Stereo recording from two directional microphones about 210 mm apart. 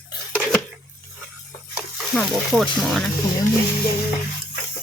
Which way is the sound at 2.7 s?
Centre (ahead or behind).